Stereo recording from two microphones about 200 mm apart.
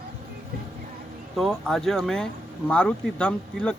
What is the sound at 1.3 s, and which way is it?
Speech, centre (ahead or behind).